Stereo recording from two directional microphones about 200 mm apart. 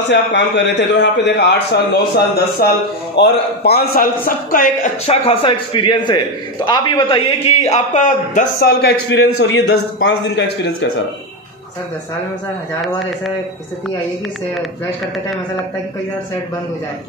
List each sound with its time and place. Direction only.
0.1 s a man's voice: 60° left (ahead or behind)